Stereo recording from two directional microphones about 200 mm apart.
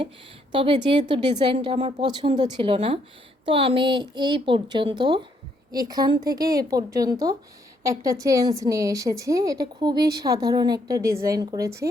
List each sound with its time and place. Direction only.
0.5 s a woman's voice: 25° right (ahead or behind)